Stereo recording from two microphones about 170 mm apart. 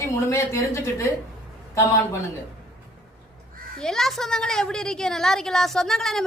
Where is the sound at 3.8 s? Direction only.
Centre (ahead or behind).